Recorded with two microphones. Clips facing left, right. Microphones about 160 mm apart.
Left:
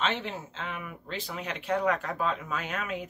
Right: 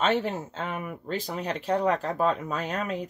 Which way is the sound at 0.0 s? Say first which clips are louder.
Right 6 dB; 45° right (ahead or behind).